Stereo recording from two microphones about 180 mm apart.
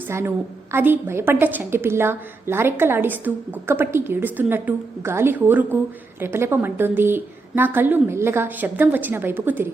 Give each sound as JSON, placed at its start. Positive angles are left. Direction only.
{"t": 0.7, "sound": "a woman's voice", "side_deg": -10}